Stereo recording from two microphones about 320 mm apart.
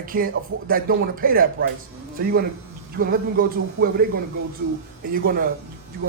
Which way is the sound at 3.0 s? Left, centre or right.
Right.